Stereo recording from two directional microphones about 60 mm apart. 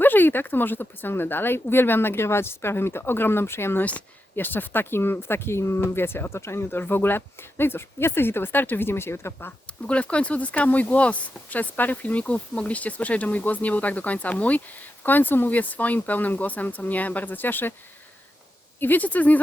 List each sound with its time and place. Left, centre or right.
0.0 s speech: left
9.8 s speech: centre; by 17.7 s left
18.8 s speech: left